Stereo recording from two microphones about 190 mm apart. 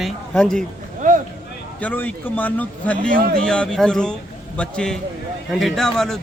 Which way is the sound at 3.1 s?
45° right (ahead or behind).